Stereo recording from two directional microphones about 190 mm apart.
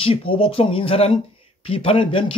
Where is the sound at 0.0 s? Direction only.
30° left (ahead or behind).